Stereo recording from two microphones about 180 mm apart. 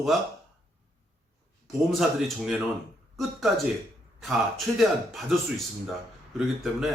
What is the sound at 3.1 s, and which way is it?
Speech, centre (ahead or behind).